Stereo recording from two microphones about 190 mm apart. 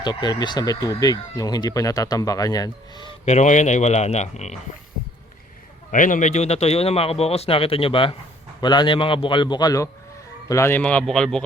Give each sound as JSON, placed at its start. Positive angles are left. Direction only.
{"t": 0.0, "sound": "speech", "side_deg": 20}
{"t": 3.2, "sound": "a man's voice", "side_deg": 40}
{"t": 5.9, "sound": "a man's voice", "side_deg": 45}